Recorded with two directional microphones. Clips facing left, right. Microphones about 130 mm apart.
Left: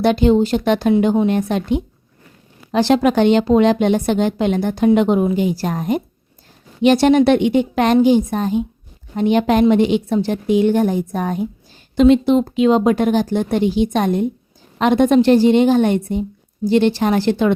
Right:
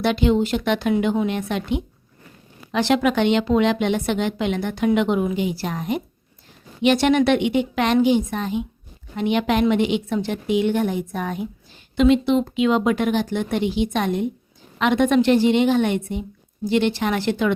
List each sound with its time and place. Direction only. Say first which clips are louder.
0.0 s a woman's voice: left 5 dB; 40° left (ahead or behind)